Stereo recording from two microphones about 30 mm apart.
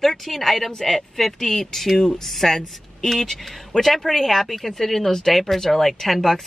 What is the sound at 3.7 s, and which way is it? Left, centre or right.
Speech, centre.